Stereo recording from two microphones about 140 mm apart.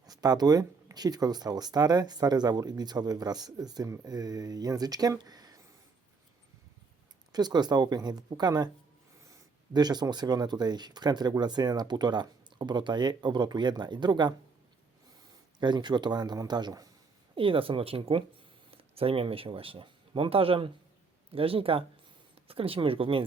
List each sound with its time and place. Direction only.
0.0 s speech: 25° right (ahead or behind)
7.3 s speech: 30° right (ahead or behind)
9.7 s speech: 30° right (ahead or behind)
15.6 s speech: 30° right (ahead or behind)
17.3 s speech: 40° right (ahead or behind)